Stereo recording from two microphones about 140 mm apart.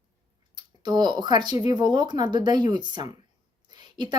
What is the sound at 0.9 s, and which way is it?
Speech, 30° right (ahead or behind).